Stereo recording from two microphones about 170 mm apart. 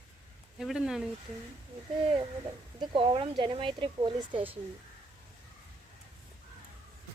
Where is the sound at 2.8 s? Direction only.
30° right (ahead or behind).